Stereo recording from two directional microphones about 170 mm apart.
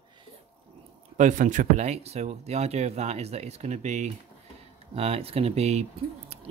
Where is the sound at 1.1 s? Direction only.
45° right (ahead or behind).